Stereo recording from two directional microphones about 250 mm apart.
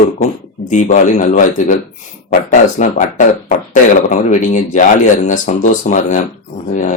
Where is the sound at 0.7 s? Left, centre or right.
Left.